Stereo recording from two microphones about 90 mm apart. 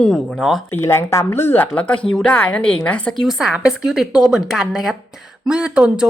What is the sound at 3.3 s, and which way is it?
A woman's voice, 5° right (ahead or behind).